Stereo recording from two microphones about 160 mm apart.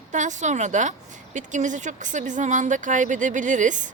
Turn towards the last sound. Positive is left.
turn(degrees=-50)  # may be behind; listen again after turning